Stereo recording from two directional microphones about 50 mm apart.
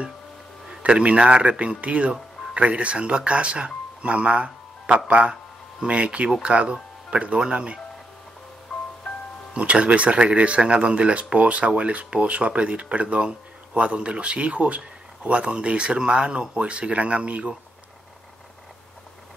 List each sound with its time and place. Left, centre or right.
0.7 s speech: right
9.5 s speech: right